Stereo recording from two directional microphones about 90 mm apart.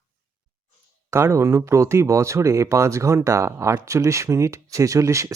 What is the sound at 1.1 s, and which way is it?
Speech, 30° right (ahead or behind).